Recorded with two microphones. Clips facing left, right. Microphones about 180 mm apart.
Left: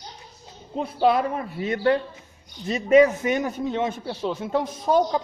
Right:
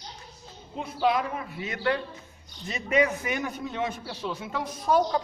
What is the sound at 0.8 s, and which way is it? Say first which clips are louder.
A man's voice: left 5 dB; 35° left (ahead or behind).